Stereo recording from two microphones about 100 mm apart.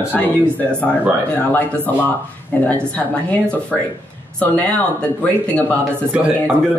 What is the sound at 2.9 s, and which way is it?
A woman's voice, 15° left (ahead or behind).